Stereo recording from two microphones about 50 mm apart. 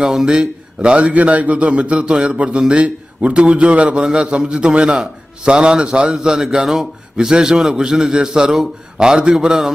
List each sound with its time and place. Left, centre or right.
0.0 s a man's voice: centre